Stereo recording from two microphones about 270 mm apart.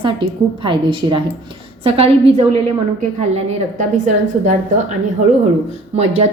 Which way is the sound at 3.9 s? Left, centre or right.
Right.